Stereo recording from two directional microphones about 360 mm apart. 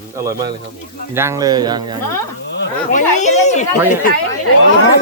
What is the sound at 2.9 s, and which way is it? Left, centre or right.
Speech, centre.